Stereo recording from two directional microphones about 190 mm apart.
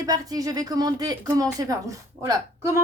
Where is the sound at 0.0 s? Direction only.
20° right (ahead or behind).